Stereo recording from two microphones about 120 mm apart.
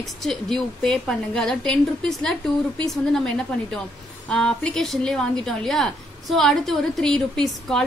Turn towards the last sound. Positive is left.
turn(degrees=5)  # may be behind; listen again after turning